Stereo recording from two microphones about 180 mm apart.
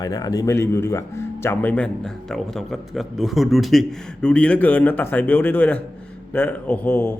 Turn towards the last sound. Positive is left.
turn(degrees=10)  # may be behind; listen again after turning